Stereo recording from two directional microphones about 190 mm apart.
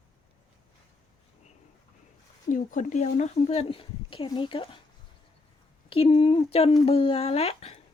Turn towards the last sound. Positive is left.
turn(degrees=30)  # may be behind; listen again after turning